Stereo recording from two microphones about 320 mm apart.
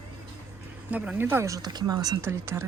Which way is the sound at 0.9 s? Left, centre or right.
Centre.